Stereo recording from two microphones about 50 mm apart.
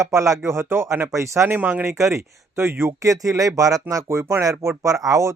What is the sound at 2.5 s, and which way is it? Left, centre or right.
Speech, right.